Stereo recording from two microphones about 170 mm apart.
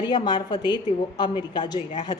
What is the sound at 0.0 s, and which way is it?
A woman's voice, 25° left (ahead or behind).